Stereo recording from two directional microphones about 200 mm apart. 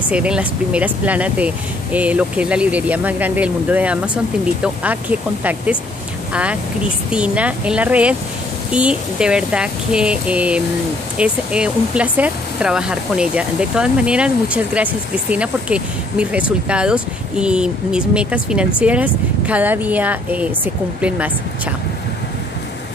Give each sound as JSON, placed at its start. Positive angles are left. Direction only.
{"t": 0.1, "sound": "speech", "side_deg": -5}